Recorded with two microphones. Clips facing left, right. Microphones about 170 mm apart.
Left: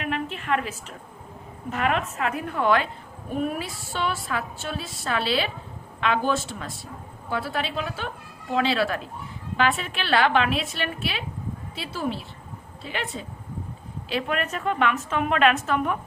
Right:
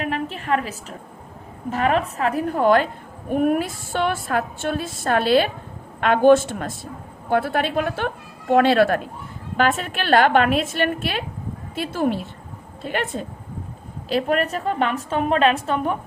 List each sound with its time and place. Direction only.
0.0 s a sound: 35° right (ahead or behind)
1.7 s a woman's voice: 35° right (ahead or behind); by 13.2 s 50° right (ahead or behind)
14.1 s a woman's voice: 40° right (ahead or behind)